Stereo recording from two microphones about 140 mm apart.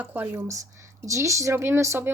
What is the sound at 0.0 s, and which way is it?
A woman's voice, 15° right (ahead or behind).